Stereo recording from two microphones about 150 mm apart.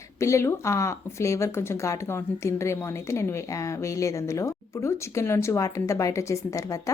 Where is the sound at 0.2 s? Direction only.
20° left (ahead or behind).